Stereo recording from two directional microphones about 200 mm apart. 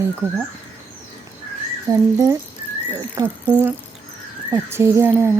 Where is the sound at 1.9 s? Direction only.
15° right (ahead or behind).